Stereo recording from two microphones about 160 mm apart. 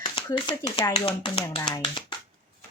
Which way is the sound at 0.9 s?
35° left (ahead or behind).